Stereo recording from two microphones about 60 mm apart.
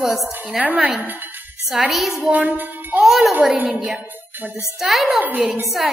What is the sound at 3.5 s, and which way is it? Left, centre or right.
Speech, right.